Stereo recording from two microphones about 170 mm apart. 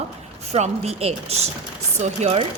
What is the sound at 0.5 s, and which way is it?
Speech, 40° right (ahead or behind).